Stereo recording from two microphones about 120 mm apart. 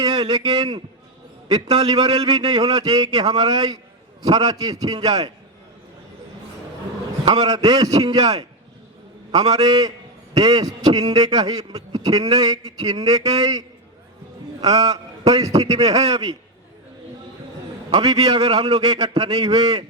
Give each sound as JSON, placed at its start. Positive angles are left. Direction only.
{"t": 0.0, "sound": "a man's voice", "side_deg": -35}
{"t": 7.3, "sound": "a man's voice", "side_deg": -35}
{"t": 17.9, "sound": "a man's voice", "side_deg": -35}
{"t": 18.3, "sound": "speech", "side_deg": -50}
{"t": 18.9, "sound": "a man's voice", "side_deg": -35}